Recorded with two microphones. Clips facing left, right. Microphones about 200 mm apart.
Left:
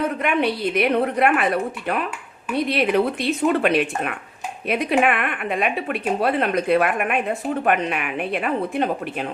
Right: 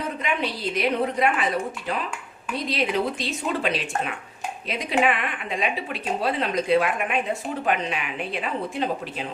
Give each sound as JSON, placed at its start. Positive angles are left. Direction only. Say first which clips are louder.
{"t": 0.0, "sound": "speech", "louder": "left 6 dB", "side_deg": 60}